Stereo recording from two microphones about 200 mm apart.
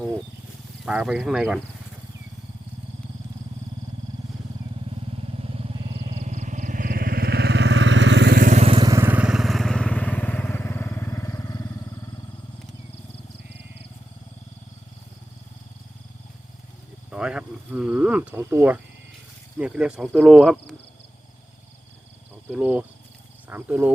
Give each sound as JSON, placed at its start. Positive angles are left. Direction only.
{"t": 0.9, "sound": "speech", "side_deg": -5}
{"t": 5.1, "sound": "vehicle", "side_deg": -30}
{"t": 8.4, "sound": "vehicle", "side_deg": -35}
{"t": 17.1, "sound": "cricket", "side_deg": -5}
{"t": 19.5, "sound": "speech", "side_deg": -5}
{"t": 22.4, "sound": "speech", "side_deg": -10}